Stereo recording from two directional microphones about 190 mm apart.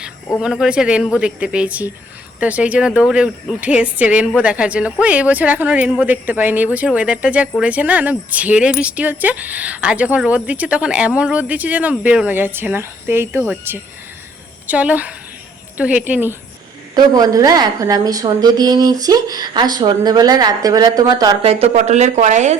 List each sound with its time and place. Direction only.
0.3 s speech: 5° right (ahead or behind)
16.9 s a woman's voice: 20° right (ahead or behind)
21.4 s speech: 30° right (ahead or behind)